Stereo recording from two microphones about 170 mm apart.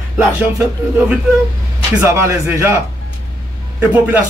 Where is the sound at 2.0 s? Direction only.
15° right (ahead or behind).